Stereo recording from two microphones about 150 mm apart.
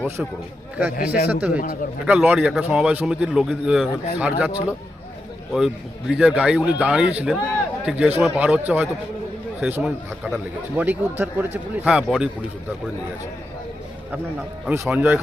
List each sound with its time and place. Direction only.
0.9 s speech: 70° left (ahead or behind)
1.3 s speech: 10° right (ahead or behind)
5.5 s speech: 5° right (ahead or behind)
14.7 s speech: 10° right (ahead or behind)